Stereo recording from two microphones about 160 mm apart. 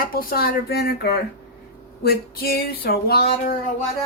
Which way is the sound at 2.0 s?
70° left (ahead or behind).